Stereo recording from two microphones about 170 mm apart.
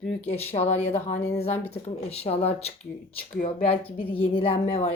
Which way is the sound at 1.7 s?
35° left (ahead or behind).